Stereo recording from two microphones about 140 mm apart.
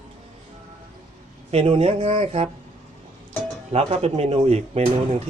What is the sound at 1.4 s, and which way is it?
A man's voice, 40° right (ahead or behind).